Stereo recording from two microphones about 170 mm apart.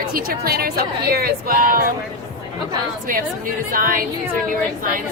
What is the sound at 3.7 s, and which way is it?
Speech, 55° right (ahead or behind).